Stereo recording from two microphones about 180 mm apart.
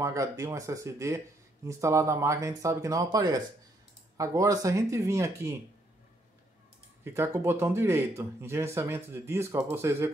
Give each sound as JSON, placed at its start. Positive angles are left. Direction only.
{"t": 0.0, "sound": "speech", "side_deg": -15}
{"t": 7.2, "sound": "speech", "side_deg": -15}